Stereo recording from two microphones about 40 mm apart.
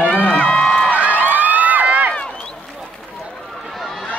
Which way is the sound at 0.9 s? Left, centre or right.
Right.